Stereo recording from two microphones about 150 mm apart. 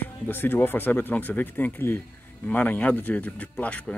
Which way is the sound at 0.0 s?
15° left (ahead or behind).